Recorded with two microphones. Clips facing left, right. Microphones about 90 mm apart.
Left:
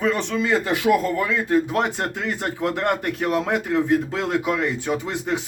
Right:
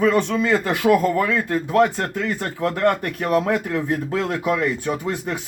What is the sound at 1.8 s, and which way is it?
Speech, 20° left (ahead or behind).